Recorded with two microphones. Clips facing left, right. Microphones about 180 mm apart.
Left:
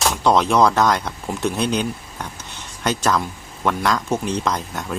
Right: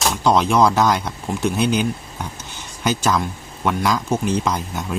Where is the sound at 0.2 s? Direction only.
Centre (ahead or behind).